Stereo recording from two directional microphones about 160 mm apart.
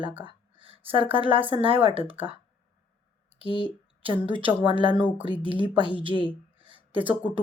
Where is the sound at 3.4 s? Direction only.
30° left (ahead or behind).